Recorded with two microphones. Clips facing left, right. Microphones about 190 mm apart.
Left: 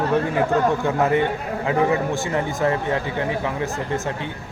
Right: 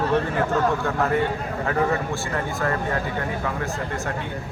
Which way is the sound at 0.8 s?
20° left (ahead or behind).